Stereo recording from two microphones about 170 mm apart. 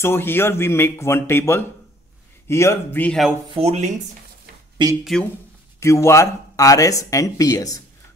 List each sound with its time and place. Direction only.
0.0 s speech: 15° left (ahead or behind)
3.5 s speech: 40° right (ahead or behind)
5.0 s speech: 5° left (ahead or behind)
5.8 s speech: 15° left (ahead or behind)